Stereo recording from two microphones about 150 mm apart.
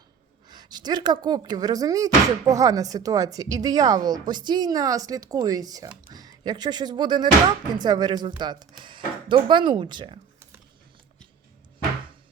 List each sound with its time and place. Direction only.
0.4 s speech: 30° right (ahead or behind)